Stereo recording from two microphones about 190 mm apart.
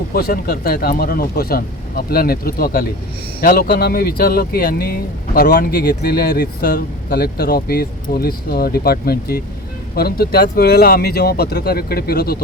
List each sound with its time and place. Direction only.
0.1 s speech: 55° left (ahead or behind)